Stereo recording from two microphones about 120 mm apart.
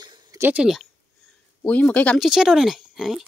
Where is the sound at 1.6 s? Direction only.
15° left (ahead or behind).